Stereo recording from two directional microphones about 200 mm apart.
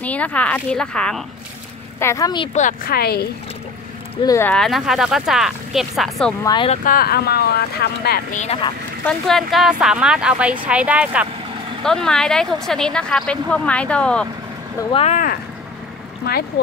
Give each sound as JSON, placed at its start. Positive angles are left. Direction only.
{"t": 0.0, "sound": "a woman's voice", "side_deg": 5}
{"t": 2.0, "sound": "a woman's voice", "side_deg": 15}
{"t": 2.5, "sound": "speech", "side_deg": 45}
{"t": 4.2, "sound": "a woman's voice", "side_deg": 15}
{"t": 6.4, "sound": "speech", "side_deg": 25}
{"t": 6.8, "sound": "speech", "side_deg": 45}
{"t": 8.4, "sound": "speech", "side_deg": 30}
{"t": 9.0, "sound": "a woman's voice", "side_deg": 0}
{"t": 14.8, "sound": "speech", "side_deg": 25}
{"t": 15.0, "sound": "speech", "side_deg": 45}
{"t": 16.3, "sound": "speech", "side_deg": 55}